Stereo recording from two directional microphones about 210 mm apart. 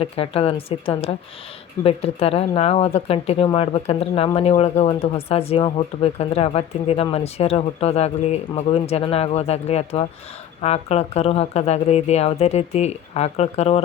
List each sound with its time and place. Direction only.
0.0 s speech: 25° left (ahead or behind)